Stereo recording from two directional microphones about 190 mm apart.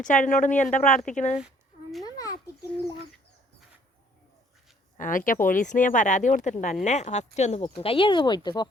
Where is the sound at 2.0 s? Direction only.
20° left (ahead or behind).